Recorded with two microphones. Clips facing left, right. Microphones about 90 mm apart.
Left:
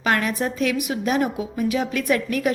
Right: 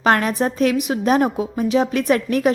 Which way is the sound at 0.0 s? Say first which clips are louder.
Right 5 dB; 40° right (ahead or behind).